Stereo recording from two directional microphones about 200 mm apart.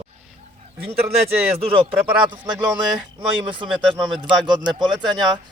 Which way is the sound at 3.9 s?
25° right (ahead or behind).